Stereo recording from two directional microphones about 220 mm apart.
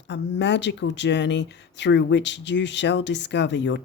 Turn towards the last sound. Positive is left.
turn(degrees=55)  # may be behind; listen again after turning